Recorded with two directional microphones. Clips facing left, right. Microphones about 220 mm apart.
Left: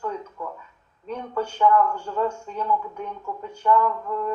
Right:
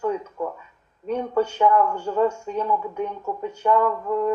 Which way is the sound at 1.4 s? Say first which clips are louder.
Right 1 dB; 10° right (ahead or behind).